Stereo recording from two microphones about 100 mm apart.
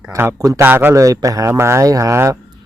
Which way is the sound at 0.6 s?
20° right (ahead or behind).